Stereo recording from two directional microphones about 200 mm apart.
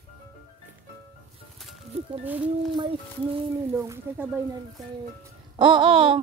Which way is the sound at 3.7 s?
15° right (ahead or behind).